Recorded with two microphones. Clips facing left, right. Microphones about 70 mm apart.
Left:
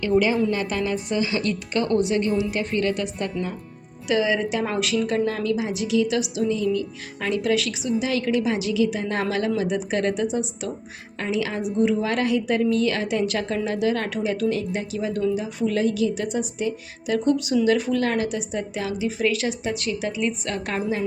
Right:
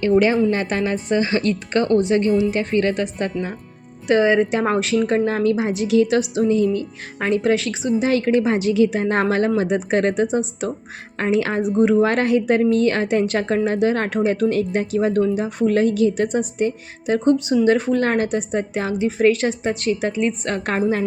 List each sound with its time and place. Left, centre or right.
0.0 s a woman's voice: right